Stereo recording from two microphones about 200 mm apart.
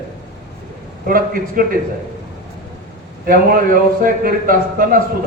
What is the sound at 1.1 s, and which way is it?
Speech, 45° right (ahead or behind).